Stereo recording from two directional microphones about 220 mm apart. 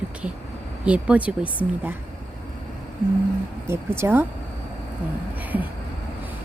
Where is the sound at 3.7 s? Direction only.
10° right (ahead or behind).